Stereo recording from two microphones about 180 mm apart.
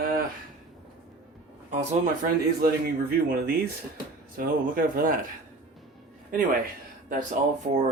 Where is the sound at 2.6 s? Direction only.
55° right (ahead or behind).